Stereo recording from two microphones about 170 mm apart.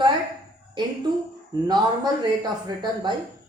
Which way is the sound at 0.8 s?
30° right (ahead or behind).